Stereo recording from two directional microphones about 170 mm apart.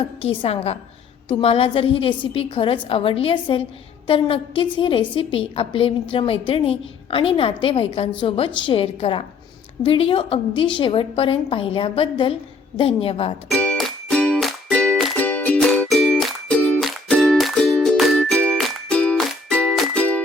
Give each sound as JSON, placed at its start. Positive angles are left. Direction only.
{"t": 0.0, "sound": "a woman's voice", "side_deg": 35}
{"t": 13.5, "sound": "music", "side_deg": 5}